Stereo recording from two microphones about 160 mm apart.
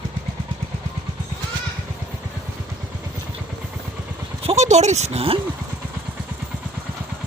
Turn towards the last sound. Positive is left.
turn(degrees=-40)  # may be behind; listen again after turning